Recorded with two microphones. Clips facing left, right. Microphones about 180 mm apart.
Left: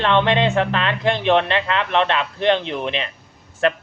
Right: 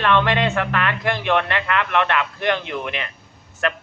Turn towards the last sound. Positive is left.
turn(degrees=30)  # may be behind; listen again after turning